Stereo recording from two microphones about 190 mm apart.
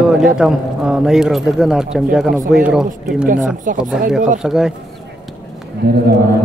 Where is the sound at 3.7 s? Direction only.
45° right (ahead or behind).